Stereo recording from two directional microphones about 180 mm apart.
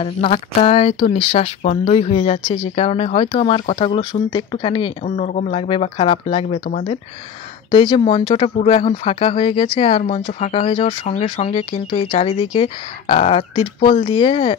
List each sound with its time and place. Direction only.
0.0 s speech: 35° left (ahead or behind)